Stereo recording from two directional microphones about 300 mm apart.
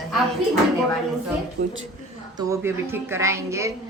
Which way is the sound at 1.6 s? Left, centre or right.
Right.